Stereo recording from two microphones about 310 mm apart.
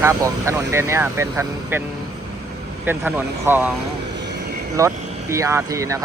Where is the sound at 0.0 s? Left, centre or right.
Centre.